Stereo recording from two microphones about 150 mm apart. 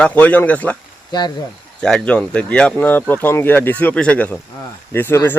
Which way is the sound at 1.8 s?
5° left (ahead or behind).